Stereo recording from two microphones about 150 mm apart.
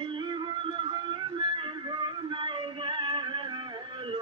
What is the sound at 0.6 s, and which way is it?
Music, 35° right (ahead or behind).